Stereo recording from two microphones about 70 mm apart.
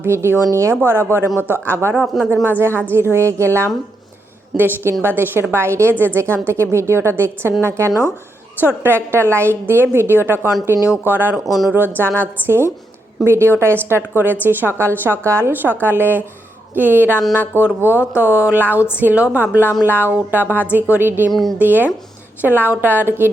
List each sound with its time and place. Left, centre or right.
0.0 s a woman's voice: right
2.0 s speech: centre
2.3 s a woman's voice: right